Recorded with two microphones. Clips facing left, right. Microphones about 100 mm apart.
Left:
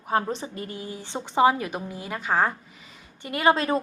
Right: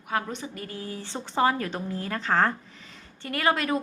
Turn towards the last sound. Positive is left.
turn(degrees=25)  # may be behind; listen again after turning